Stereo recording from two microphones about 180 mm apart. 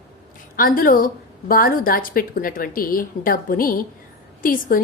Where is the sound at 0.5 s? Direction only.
50° left (ahead or behind).